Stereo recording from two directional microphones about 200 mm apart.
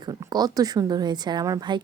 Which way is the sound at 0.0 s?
20° right (ahead or behind).